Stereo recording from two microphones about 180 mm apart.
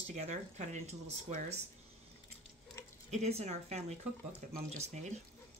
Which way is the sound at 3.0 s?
40° right (ahead or behind).